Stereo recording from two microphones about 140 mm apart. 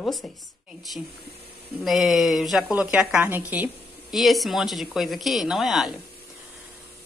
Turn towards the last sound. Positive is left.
turn(degrees=0)  # may be behind; listen again after turning